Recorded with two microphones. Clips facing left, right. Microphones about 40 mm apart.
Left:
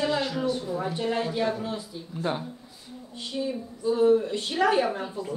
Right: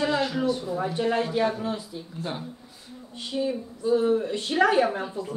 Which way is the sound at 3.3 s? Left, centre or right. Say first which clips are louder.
Right 3 dB; centre.